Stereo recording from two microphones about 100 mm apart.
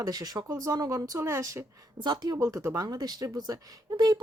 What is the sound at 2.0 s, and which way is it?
Speech, 45° right (ahead or behind).